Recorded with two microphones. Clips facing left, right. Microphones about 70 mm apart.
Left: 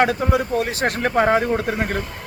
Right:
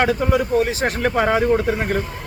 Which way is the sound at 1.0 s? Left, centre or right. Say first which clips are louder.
Left 1 dB; left.